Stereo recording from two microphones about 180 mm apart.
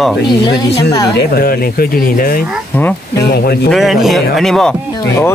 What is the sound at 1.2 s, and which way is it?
Speech, 55° left (ahead or behind).